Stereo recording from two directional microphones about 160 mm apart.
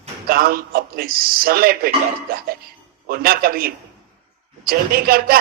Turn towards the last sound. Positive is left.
turn(degrees=-70)  # may be behind; listen again after turning